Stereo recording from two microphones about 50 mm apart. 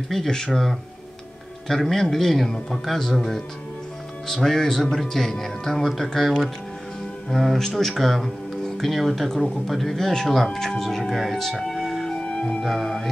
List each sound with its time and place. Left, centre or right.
0.1 s speech: centre
1.7 s speech: centre
12.1 s music: centre
12.6 s speech: centre